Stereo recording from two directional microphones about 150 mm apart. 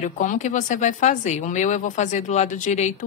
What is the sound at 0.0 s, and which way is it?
Speech, 55° left (ahead or behind).